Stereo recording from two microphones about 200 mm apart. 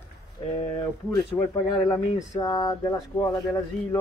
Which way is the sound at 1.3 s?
10° left (ahead or behind).